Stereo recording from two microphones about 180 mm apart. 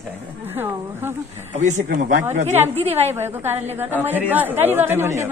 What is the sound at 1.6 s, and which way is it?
A woman's voice, 40° right (ahead or behind).